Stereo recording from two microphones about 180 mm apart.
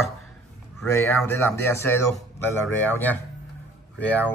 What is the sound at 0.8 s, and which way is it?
Speech, 15° left (ahead or behind).